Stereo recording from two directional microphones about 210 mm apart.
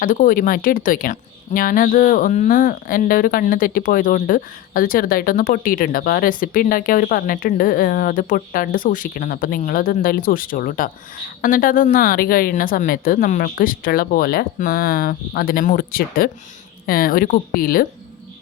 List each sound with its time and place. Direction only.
0.0 s a woman's voice: 40° left (ahead or behind)